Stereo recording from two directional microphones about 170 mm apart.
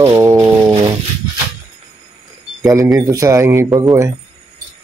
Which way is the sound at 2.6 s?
15° right (ahead or behind).